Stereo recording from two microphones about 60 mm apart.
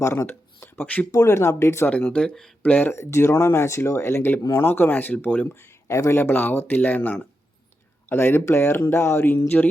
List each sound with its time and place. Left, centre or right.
0.0 s a sound: left
1.1 s speech: left
1.9 s speech: centre
2.6 s speech: left
2.9 s speech: left
6.1 s speech: left
8.1 s speech: left
9.5 s speech: left